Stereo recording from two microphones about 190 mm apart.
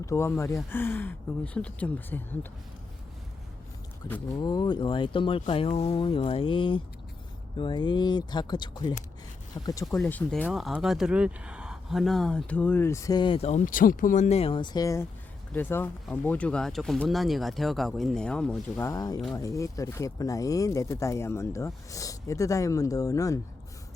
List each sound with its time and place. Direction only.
0.0 s speech: 15° left (ahead or behind)
4.4 s speech: 20° left (ahead or behind)
9.9 s speech: 10° left (ahead or behind)
10.4 s speech: 5° right (ahead or behind)
18.8 s speech: 20° left (ahead or behind)